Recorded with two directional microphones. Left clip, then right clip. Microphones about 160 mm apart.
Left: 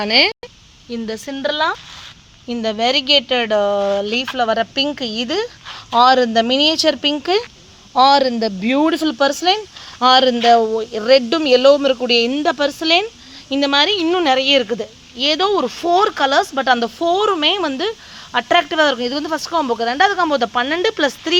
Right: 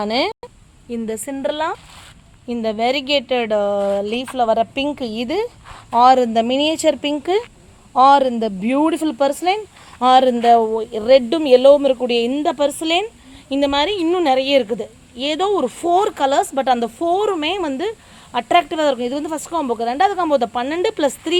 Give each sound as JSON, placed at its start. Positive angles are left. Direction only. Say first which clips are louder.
{"t": 0.0, "sound": "speech", "louder": "left 5 dB", "side_deg": 0}
{"t": 5.6, "sound": "speech", "louder": "even", "side_deg": 0}